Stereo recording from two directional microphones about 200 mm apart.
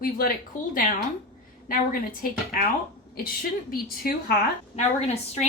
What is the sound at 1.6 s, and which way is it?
Speech, 45° left (ahead or behind).